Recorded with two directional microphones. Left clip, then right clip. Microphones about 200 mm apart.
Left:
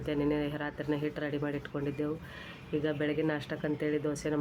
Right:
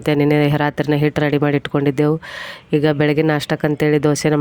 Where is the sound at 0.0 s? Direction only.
55° right (ahead or behind).